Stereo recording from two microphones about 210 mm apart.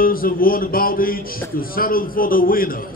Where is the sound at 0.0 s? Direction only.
45° left (ahead or behind).